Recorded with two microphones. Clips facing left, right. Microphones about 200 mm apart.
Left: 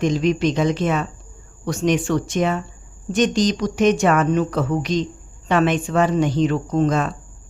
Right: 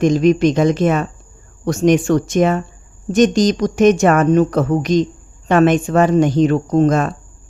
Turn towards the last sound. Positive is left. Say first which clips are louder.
# right 5 dB
turn(degrees=-45)  # may be behind; listen again after turning